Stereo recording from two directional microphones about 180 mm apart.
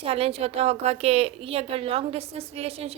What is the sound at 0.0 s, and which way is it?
A woman's voice, 35° right (ahead or behind).